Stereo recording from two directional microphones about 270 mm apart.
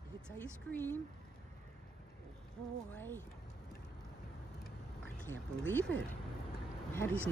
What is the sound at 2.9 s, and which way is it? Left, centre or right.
Speech, centre.